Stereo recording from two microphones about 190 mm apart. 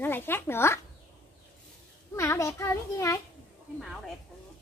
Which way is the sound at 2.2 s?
15° left (ahead or behind).